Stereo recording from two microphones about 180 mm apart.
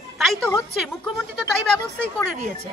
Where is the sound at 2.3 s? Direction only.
35° right (ahead or behind).